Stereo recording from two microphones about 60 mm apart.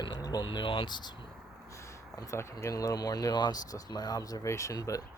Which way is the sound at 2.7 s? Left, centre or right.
Left.